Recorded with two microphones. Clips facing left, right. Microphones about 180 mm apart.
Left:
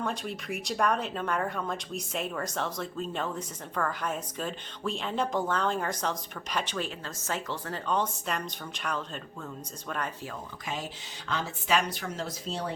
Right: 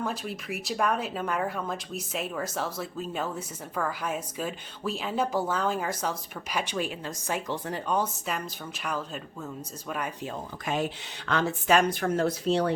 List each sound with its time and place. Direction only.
0.0 s speech: 5° right (ahead or behind)
10.7 s speech: 60° right (ahead or behind)